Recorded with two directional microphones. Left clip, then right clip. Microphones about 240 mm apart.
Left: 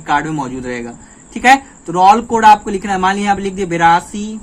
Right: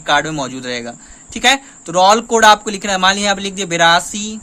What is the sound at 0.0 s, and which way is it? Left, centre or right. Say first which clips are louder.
A man's voice: right 1 dB; right.